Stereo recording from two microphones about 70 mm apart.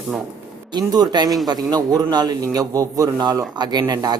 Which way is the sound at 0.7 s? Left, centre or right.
Right.